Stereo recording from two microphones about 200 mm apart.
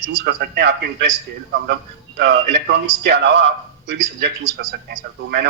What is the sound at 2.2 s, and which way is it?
A man's voice, 60° right (ahead or behind).